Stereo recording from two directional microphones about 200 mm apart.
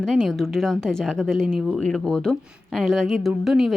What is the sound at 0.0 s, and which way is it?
A woman's voice, centre (ahead or behind).